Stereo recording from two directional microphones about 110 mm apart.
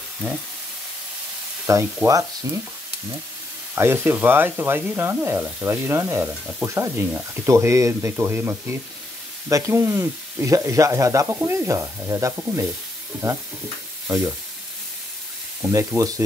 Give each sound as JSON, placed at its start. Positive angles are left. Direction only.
{"t": 1.7, "sound": "speech", "side_deg": -25}
{"t": 2.4, "sound": "frying", "side_deg": -30}
{"t": 3.7, "sound": "speech", "side_deg": -20}
{"t": 14.0, "sound": "frying", "side_deg": -30}
{"t": 15.6, "sound": "speech", "side_deg": -25}